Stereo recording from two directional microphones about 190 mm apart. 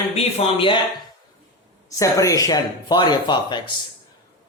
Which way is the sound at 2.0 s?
15° left (ahead or behind).